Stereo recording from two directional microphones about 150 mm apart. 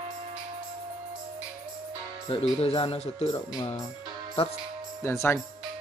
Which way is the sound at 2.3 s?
40° left (ahead or behind).